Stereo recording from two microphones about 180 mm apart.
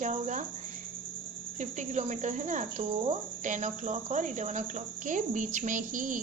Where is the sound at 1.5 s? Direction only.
40° right (ahead or behind).